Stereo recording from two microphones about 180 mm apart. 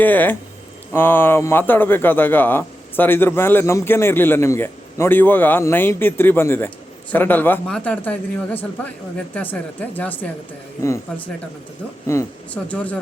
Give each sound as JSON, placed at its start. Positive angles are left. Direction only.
{"t": 0.0, "sound": "a man's voice", "side_deg": 10}
{"t": 12.1, "sound": "a man's voice", "side_deg": 15}